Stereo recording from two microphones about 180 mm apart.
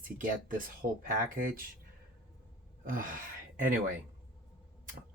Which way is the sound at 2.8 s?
50° right (ahead or behind).